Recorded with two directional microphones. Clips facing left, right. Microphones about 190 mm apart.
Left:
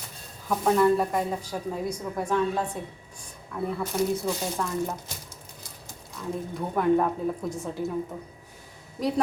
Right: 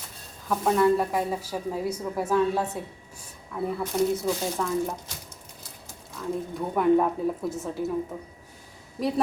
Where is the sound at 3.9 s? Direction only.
Centre (ahead or behind).